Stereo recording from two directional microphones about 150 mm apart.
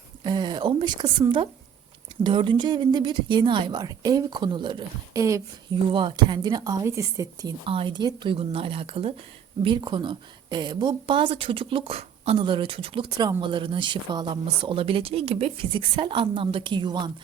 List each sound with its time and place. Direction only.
0.3 s a woman's voice: 30° right (ahead or behind)
5.7 s a woman's voice: 35° right (ahead or behind)
7.7 s speech: 35° right (ahead or behind)